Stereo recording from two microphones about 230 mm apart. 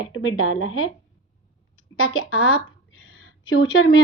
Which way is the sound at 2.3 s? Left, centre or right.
Left.